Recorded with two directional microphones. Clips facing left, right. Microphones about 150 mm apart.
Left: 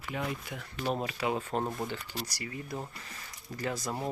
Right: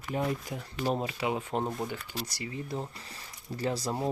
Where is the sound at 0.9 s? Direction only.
20° right (ahead or behind).